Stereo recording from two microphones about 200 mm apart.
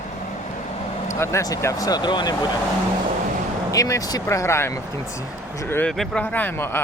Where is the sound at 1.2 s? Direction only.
15° left (ahead or behind).